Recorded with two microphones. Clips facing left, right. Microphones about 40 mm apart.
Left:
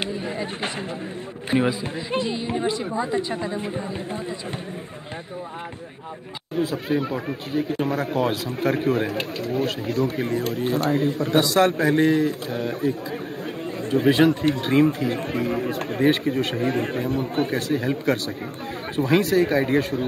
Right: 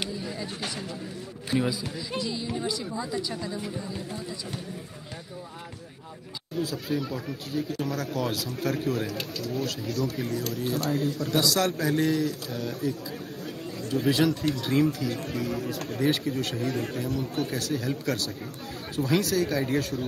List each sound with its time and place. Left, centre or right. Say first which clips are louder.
0.0 s chatter: left 6 dB; left
1.5 s speech: left 5 dB; left
6.5 s speech: left 6 dB; left